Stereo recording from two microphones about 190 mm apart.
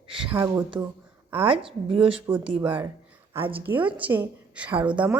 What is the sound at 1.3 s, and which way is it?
Speech, 30° right (ahead or behind).